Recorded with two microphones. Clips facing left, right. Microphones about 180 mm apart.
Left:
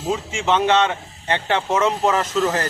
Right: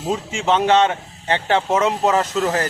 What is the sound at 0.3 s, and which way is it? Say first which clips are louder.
Speech: right 2 dB; 5° right (ahead or behind).